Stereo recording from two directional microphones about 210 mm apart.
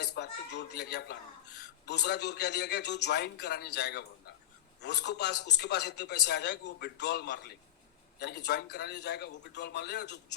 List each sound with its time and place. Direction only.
0.0 s speech: 55° left (ahead or behind)